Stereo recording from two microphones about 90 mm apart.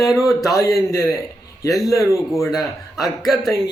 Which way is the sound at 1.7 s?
Centre (ahead or behind).